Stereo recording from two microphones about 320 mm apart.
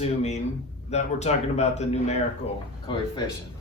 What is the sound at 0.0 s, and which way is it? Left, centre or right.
Speech, left.